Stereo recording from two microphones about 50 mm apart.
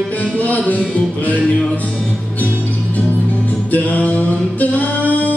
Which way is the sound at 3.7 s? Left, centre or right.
Left.